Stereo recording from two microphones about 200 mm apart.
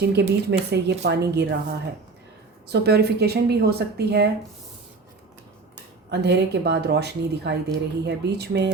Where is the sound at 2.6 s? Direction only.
55° right (ahead or behind).